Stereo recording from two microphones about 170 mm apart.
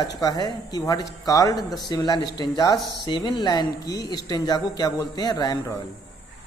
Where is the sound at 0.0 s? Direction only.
25° left (ahead or behind).